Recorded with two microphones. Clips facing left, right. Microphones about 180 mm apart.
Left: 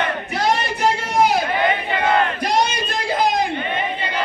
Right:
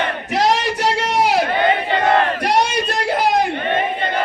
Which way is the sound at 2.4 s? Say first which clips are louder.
Right 2 dB; 70° right (ahead or behind).